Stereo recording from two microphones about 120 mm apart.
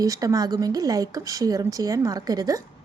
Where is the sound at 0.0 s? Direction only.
30° right (ahead or behind).